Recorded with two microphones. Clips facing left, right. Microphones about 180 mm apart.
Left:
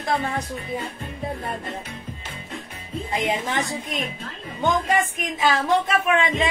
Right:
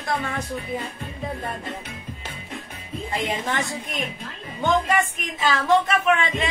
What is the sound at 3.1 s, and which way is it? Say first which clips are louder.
Speech: left 2 dB; 15° left (ahead or behind).